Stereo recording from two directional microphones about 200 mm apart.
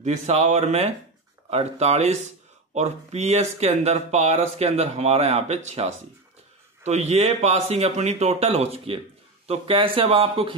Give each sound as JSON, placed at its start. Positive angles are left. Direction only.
{"t": 0.0, "sound": "speech", "side_deg": -35}